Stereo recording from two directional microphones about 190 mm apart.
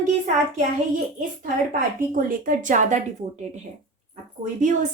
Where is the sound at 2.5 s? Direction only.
40° right (ahead or behind).